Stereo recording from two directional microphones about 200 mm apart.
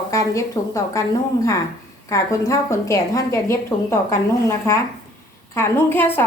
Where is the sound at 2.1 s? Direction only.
15° left (ahead or behind).